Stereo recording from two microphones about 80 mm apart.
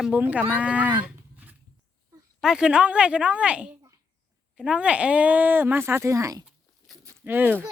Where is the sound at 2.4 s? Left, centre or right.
Centre; by 6.4 s right.